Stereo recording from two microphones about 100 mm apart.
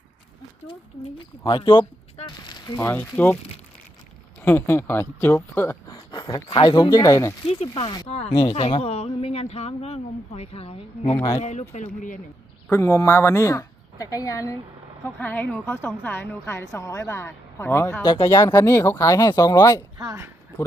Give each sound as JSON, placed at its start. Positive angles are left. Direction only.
{"t": 1.2, "sound": "speech", "side_deg": 55}
{"t": 2.7, "sound": "a woman's voice", "side_deg": 25}
{"t": 4.4, "sound": "a woman's voice", "side_deg": 20}
{"t": 6.1, "sound": "a sound", "side_deg": 45}
{"t": 6.5, "sound": "speech", "side_deg": 55}
{"t": 6.9, "sound": "speech", "side_deg": 35}
{"t": 7.4, "sound": "speech", "side_deg": 90}
{"t": 7.7, "sound": "speech", "side_deg": 55}
{"t": 8.3, "sound": "speech", "side_deg": 45}
{"t": 8.8, "sound": "speech", "side_deg": 90}
{"t": 12.7, "sound": "a woman's voice", "side_deg": 25}
{"t": 15.0, "sound": "a woman's voice", "side_deg": 20}